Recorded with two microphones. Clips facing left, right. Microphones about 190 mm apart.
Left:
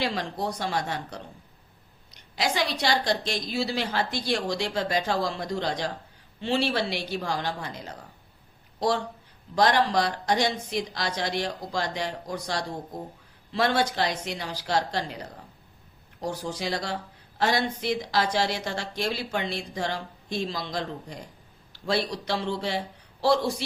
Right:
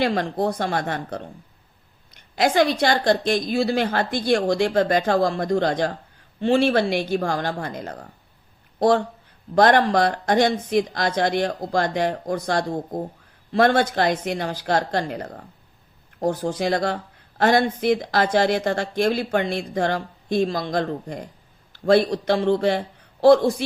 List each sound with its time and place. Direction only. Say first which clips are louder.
0.0 s speech: right 7 dB; 55° right (ahead or behind)